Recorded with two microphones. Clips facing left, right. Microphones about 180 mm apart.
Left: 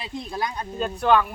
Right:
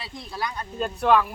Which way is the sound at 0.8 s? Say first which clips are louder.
Even; centre (ahead or behind).